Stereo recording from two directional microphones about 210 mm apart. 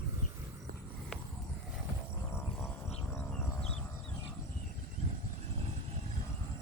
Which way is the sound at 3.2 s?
10° left (ahead or behind).